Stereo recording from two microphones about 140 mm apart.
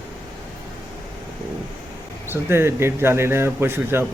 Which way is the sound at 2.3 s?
15° right (ahead or behind).